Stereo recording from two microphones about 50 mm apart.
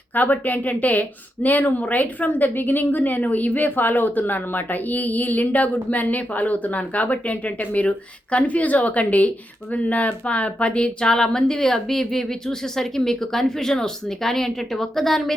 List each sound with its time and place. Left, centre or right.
0.1 s speech: left; by 15.3 s centre